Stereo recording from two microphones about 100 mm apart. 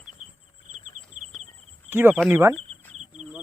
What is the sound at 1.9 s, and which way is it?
Speech, 20° right (ahead or behind).